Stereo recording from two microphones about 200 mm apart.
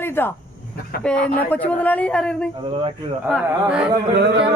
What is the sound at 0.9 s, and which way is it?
Speech, 50° left (ahead or behind).